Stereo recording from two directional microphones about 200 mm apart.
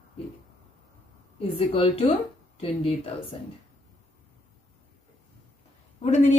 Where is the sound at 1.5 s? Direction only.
30° left (ahead or behind).